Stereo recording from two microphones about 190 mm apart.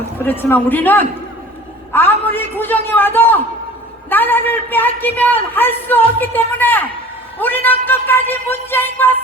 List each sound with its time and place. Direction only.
0.2 s a man's voice: 10° left (ahead or behind)